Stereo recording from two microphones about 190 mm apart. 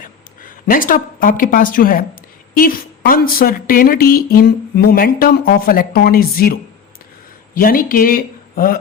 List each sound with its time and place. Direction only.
0.0 s speech: 45° left (ahead or behind)